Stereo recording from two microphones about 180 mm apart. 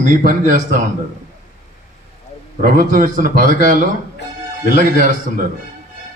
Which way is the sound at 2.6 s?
50° right (ahead or behind).